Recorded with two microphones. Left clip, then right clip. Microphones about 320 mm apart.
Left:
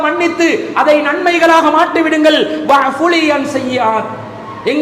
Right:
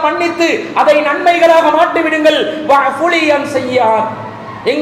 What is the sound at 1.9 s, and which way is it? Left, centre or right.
Speech, left.